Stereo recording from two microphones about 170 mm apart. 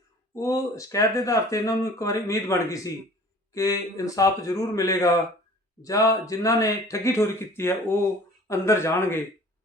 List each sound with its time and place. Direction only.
0.3 s speech: 20° left (ahead or behind)